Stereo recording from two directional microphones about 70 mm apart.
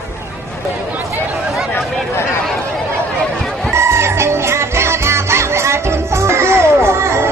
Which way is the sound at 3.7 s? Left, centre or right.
Right.